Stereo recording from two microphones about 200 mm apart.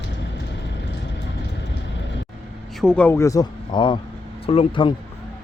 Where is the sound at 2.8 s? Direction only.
5° left (ahead or behind).